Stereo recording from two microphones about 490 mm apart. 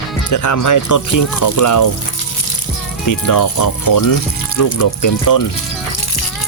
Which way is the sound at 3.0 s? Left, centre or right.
Left.